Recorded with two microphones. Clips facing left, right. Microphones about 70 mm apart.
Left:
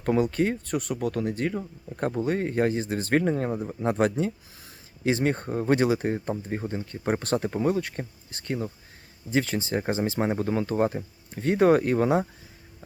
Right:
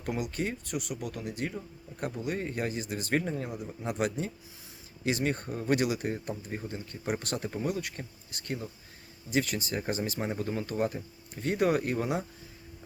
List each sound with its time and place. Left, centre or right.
0.0 s speech: left
3.8 s speech: left
10.2 s speech: left